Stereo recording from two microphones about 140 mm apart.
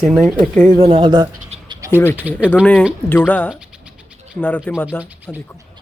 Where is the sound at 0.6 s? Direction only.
50° right (ahead or behind).